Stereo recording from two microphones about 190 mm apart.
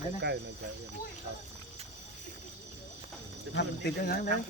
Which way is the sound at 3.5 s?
55° left (ahead or behind).